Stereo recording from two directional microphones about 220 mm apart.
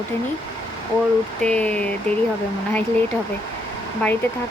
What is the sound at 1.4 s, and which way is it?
Speech, 5° left (ahead or behind).